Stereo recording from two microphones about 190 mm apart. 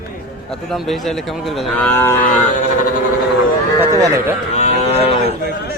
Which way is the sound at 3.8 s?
15° right (ahead or behind).